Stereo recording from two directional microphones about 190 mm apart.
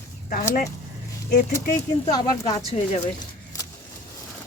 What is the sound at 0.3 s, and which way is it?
Speech, 45° left (ahead or behind).